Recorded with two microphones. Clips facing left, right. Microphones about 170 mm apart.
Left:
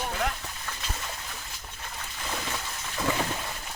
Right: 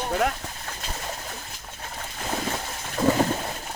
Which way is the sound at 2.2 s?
45° right (ahead or behind).